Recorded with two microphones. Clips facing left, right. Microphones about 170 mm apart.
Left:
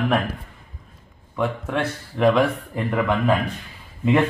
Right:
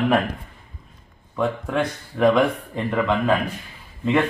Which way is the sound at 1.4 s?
Centre (ahead or behind).